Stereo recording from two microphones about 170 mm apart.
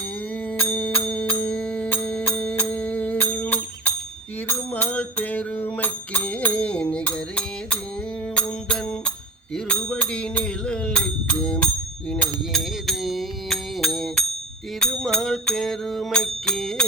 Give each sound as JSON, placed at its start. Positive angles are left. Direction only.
{"t": 0.6, "sound": "music", "side_deg": 10}
{"t": 4.4, "sound": "mantra", "side_deg": 10}
{"t": 8.4, "sound": "music", "side_deg": 5}